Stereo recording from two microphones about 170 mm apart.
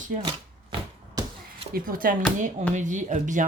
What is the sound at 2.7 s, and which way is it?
Speech, 45° right (ahead or behind).